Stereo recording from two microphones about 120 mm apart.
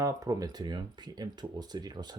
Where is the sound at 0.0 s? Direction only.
30° right (ahead or behind).